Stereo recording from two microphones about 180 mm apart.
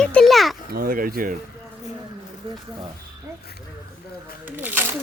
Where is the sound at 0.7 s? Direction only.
55° right (ahead or behind).